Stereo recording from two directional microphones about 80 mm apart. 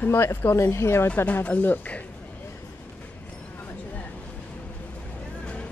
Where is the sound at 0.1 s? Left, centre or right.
Left.